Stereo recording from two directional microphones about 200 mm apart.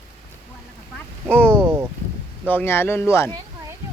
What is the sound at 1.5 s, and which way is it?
Boat, 10° right (ahead or behind).